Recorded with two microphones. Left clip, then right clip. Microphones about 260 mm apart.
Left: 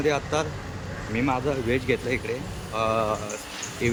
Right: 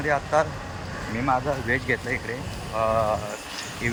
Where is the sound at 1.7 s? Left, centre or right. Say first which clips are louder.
Right 1 dB; right.